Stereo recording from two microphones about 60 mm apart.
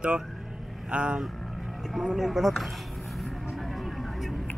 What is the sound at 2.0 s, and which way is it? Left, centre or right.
Speech, centre.